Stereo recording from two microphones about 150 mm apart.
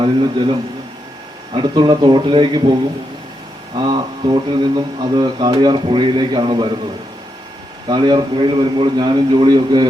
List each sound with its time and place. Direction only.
0.0 s speech: 30° right (ahead or behind)
1.5 s speech: 30° right (ahead or behind)
3.8 s speech: 30° right (ahead or behind)
7.9 s speech: 30° right (ahead or behind)